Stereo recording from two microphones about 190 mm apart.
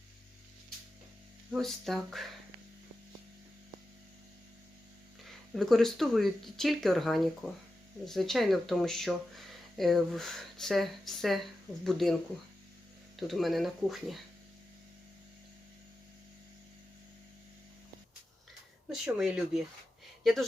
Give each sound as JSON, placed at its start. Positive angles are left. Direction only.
{"t": 1.5, "sound": "speech", "side_deg": 0}
{"t": 5.5, "sound": "speech", "side_deg": 0}
{"t": 13.1, "sound": "speech", "side_deg": 0}
{"t": 18.9, "sound": "speech", "side_deg": -5}